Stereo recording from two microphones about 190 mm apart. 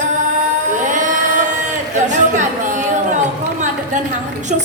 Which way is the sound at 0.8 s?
40° right (ahead or behind).